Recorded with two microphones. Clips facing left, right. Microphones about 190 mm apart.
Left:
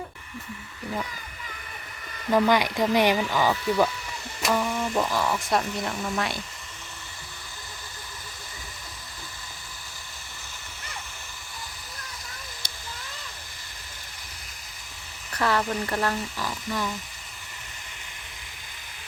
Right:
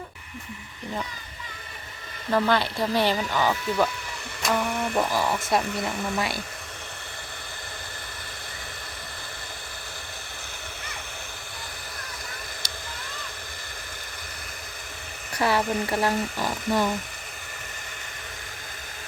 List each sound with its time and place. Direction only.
2.3 s speech: 15° left (ahead or behind)
4.5 s speech: 5° right (ahead or behind)
15.4 s speech: 10° right (ahead or behind)
16.4 s speech: 55° right (ahead or behind)